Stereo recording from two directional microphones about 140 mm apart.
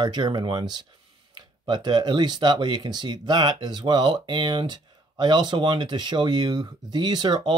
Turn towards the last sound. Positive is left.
turn(degrees=-30)  # may be behind; listen again after turning